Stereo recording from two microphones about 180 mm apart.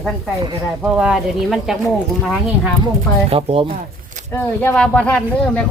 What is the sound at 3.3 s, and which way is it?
Speech, 30° right (ahead or behind).